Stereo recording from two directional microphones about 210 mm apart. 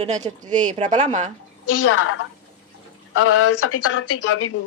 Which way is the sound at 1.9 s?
80° left.